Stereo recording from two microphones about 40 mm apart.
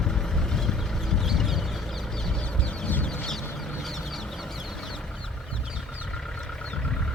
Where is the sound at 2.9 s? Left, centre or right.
Left.